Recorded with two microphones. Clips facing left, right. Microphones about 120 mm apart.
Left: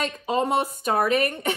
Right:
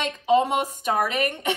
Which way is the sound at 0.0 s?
40° left (ahead or behind).